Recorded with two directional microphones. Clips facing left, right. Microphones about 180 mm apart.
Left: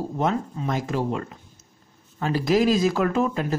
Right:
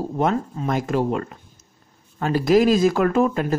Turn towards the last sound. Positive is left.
turn(degrees=-55)  # may be behind; listen again after turning